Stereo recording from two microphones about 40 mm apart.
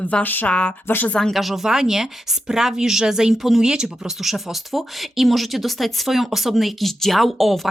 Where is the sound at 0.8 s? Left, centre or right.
Left.